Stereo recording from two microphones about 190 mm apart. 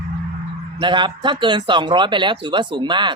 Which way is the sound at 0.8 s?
25° right (ahead or behind).